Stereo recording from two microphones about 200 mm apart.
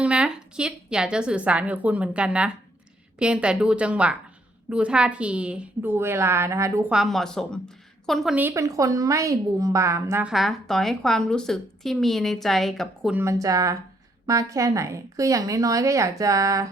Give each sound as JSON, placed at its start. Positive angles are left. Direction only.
{"t": 0.0, "sound": "a woman's voice", "side_deg": -5}
{"t": 6.9, "sound": "a woman's voice", "side_deg": 0}
{"t": 13.1, "sound": "a woman's voice", "side_deg": -15}